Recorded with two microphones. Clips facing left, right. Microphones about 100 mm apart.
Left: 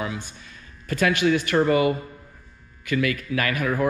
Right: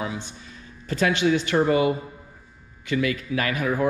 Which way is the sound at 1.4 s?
60° left (ahead or behind).